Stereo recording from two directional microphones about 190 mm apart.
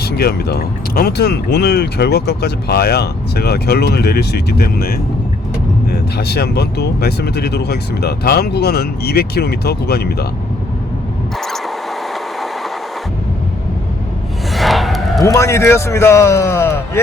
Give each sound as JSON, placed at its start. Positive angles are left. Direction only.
{"t": 0.0, "sound": "speech", "side_deg": 55}
{"t": 14.5, "sound": "a sound", "side_deg": 0}
{"t": 15.2, "sound": "a man's voice", "side_deg": 15}